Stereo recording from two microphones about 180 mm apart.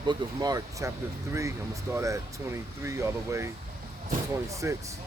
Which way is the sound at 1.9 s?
15° right (ahead or behind).